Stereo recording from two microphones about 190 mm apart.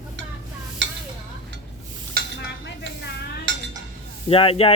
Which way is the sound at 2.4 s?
65° left (ahead or behind).